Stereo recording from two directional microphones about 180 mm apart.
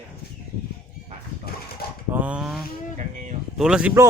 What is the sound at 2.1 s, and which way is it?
Speech, 10° right (ahead or behind).